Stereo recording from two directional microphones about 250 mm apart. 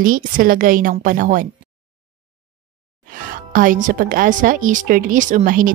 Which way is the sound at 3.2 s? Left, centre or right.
Right.